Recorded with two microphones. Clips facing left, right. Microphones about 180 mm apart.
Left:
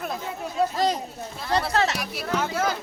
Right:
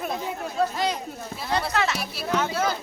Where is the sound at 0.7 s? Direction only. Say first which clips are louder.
Left 3 dB; 40° left (ahead or behind).